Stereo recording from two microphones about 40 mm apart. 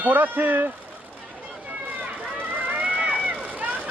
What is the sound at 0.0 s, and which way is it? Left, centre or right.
Speech, right.